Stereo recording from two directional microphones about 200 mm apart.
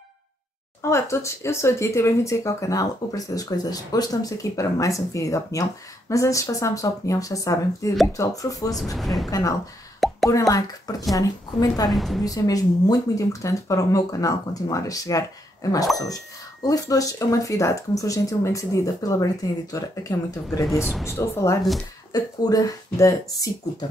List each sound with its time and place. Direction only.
0.8 s speech: 15° left (ahead or behind)
8.9 s a woman's voice: centre (ahead or behind)
9.3 s speech: 15° left (ahead or behind)
9.9 s plop: centre (ahead or behind)
10.3 s speech: 15° left (ahead or behind)
11.9 s a woman's voice: centre (ahead or behind)
12.3 s speech: 20° left (ahead or behind)
20.6 s a woman's voice: centre (ahead or behind)
21.0 s speech: 15° left (ahead or behind)